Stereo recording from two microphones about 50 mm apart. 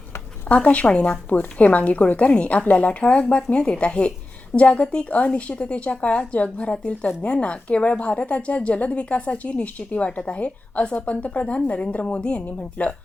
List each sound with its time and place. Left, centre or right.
0.4 s a woman's voice: left
1.3 s a woman's voice: left
12.8 s speech: left